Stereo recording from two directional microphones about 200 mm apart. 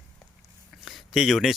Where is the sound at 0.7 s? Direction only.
Centre (ahead or behind).